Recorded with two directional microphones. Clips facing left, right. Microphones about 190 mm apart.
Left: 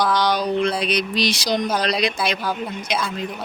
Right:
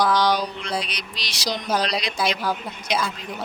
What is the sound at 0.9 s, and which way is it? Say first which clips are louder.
Speech: left 15 dB; 55° left (ahead or behind).